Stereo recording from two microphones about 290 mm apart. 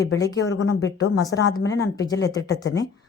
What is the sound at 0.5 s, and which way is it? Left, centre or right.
A woman's voice, left.